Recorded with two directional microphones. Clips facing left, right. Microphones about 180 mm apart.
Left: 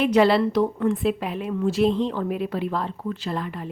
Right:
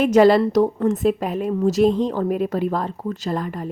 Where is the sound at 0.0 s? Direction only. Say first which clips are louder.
Right 4 dB; 45° right (ahead or behind).